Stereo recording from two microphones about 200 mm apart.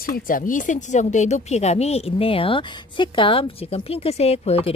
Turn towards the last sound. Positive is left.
turn(degrees=30)  # may be behind; listen again after turning